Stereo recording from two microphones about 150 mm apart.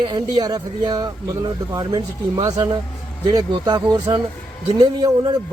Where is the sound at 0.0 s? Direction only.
30° right (ahead or behind).